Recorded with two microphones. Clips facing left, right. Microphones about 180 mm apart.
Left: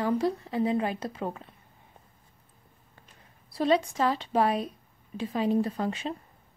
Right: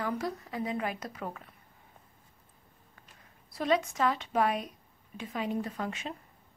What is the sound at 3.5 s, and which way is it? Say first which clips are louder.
A woman's voice: left 4 dB; 30° left (ahead or behind).